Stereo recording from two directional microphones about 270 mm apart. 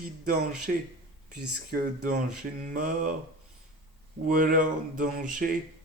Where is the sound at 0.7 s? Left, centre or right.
Right.